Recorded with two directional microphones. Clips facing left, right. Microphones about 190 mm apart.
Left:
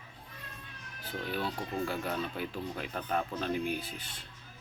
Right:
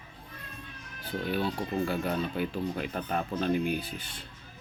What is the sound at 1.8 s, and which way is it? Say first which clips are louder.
Speech: right 4 dB; centre (ahead or behind).